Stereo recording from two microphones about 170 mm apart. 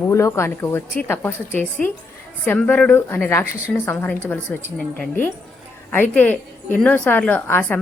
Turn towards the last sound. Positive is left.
turn(degrees=10)  # may be behind; listen again after turning